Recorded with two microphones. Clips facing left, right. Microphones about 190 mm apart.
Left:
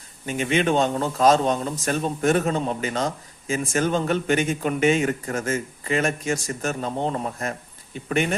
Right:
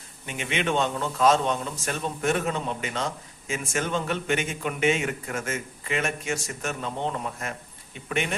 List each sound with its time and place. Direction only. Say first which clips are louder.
0.3 s speech: left 6 dB; 40° left (ahead or behind)